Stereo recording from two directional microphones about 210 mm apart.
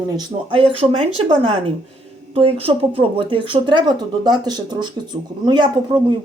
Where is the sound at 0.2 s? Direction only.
25° right (ahead or behind).